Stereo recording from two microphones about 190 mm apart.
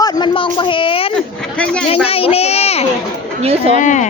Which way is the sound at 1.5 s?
5° left (ahead or behind).